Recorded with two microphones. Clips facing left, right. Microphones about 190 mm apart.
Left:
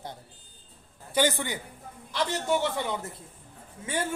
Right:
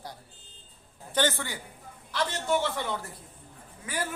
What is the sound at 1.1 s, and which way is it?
A man's voice, 15° left (ahead or behind).